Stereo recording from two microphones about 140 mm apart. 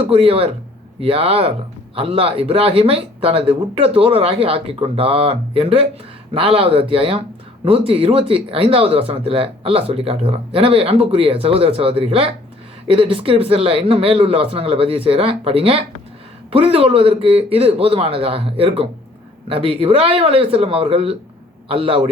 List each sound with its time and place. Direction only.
0.0 s speech: 45° right (ahead or behind)